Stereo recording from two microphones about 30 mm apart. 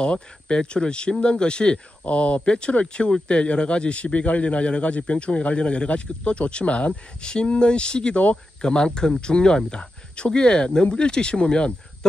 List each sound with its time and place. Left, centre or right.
0.0 s speech: left
2.0 s speech: left
2.4 s speech: left
4.0 s speech: left
6.9 s speech: left